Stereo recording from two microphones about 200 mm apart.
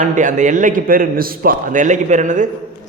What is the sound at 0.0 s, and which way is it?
A man's voice, 40° right (ahead or behind).